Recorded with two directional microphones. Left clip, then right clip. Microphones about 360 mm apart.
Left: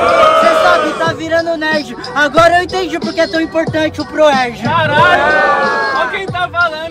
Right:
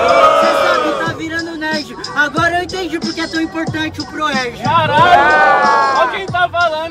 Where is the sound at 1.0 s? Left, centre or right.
Centre.